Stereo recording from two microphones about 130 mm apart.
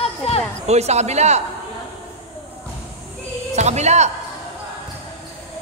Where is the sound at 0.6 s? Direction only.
55° right (ahead or behind).